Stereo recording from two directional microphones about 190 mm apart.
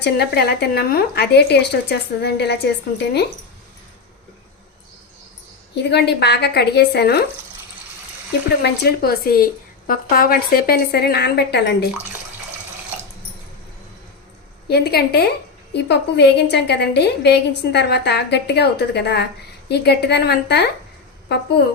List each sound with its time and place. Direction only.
0.0 s a woman's voice: 60° left (ahead or behind)
5.7 s a woman's voice: 60° left (ahead or behind)
8.6 s a woman's voice: 60° left (ahead or behind)
14.7 s a woman's voice: 55° left (ahead or behind)